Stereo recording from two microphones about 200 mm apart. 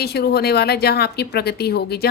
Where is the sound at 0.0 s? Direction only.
55° left (ahead or behind).